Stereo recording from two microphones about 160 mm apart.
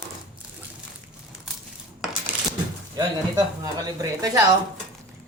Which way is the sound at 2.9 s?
20° right (ahead or behind).